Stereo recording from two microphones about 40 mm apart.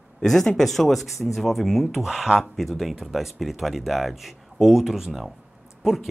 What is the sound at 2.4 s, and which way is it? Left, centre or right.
Speech, centre.